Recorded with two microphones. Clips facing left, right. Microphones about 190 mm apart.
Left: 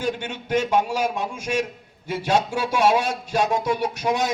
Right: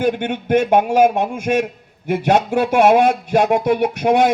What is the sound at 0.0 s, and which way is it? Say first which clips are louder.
A man's voice: right 8 dB; 55° right (ahead or behind).